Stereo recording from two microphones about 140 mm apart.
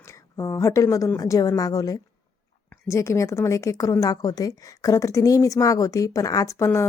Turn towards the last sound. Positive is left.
turn(degrees=20)  # may be behind; listen again after turning